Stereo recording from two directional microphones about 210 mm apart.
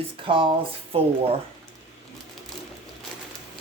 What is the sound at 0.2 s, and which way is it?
Speech, 25° right (ahead or behind).